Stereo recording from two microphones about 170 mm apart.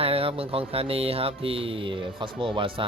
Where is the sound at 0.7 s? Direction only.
35° right (ahead or behind).